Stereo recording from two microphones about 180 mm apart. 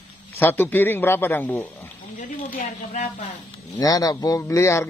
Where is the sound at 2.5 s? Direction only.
45° left (ahead or behind).